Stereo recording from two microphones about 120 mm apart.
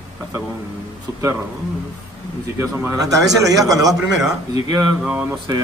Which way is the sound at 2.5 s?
20° right (ahead or behind).